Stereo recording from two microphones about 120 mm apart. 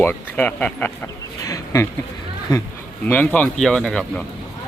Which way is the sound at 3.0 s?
15° left (ahead or behind).